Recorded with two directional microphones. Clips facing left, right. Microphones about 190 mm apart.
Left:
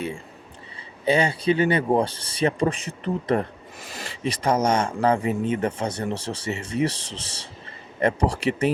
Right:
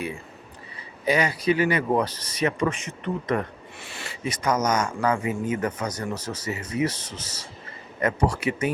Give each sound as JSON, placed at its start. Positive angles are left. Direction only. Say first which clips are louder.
{"t": 1.0, "sound": "speech", "louder": "left 2 dB", "side_deg": 30}